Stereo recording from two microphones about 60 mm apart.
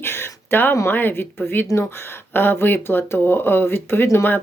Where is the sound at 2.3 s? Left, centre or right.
Left.